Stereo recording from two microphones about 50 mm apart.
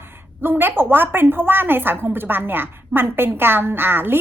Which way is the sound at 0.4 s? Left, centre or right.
Right.